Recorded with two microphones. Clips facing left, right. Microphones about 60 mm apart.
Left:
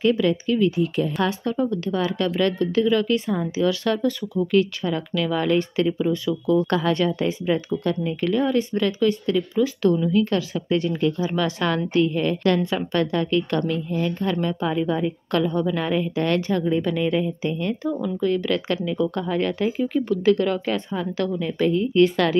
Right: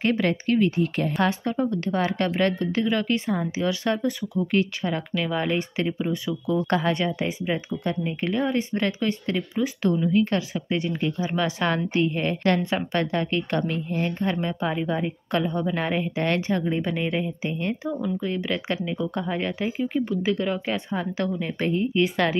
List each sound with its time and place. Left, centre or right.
0.0 s a woman's voice: right
1.2 s a woman's voice: right
9.6 s a woman's voice: right
14.3 s a woman's voice: right
20.9 s a woman's voice: right
21.9 s a woman's voice: right